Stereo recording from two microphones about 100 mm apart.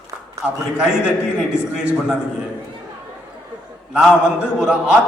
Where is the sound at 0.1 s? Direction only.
40° right (ahead or behind).